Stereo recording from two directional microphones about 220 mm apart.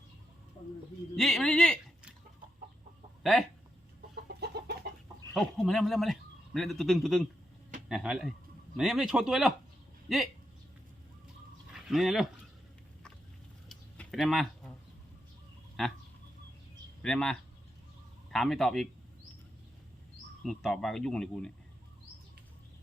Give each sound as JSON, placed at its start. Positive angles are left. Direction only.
{"t": 1.1, "sound": "speech", "side_deg": 0}
{"t": 4.1, "sound": "chicken", "side_deg": -45}
{"t": 5.3, "sound": "a man's voice", "side_deg": 0}
{"t": 11.7, "sound": "speech", "side_deg": 0}
{"t": 13.7, "sound": "a sound", "side_deg": 5}
{"t": 15.8, "sound": "speech", "side_deg": 0}
{"t": 17.0, "sound": "a man's voice", "side_deg": 5}
{"t": 20.4, "sound": "speech", "side_deg": 0}